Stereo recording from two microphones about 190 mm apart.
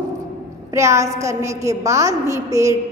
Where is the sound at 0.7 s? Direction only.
15° right (ahead or behind).